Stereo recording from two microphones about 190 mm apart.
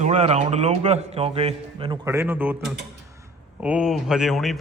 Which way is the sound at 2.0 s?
10° right (ahead or behind).